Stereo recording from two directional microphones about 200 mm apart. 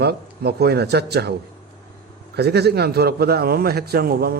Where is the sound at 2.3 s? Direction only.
55° right (ahead or behind).